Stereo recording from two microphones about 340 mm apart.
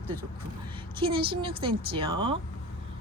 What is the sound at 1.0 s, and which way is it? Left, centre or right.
Speech, centre.